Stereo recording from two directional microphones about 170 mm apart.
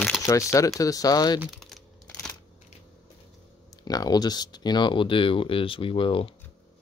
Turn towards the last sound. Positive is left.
turn(degrees=30)  # may be behind; listen again after turning